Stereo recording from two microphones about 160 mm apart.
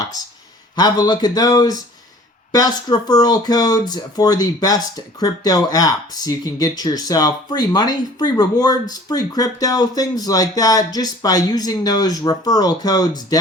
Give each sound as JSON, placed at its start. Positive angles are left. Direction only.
{"t": 0.8, "sound": "speech", "side_deg": 25}